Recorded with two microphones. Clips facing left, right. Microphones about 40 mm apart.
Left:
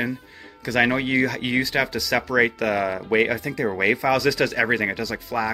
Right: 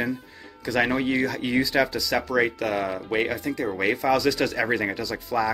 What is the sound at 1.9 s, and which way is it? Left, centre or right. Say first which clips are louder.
Speech: left 2 dB; left.